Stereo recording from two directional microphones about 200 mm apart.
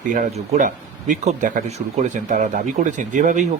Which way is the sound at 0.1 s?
35° right (ahead or behind).